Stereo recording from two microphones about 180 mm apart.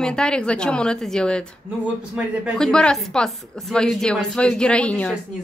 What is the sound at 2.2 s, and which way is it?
Speech, 5° right (ahead or behind).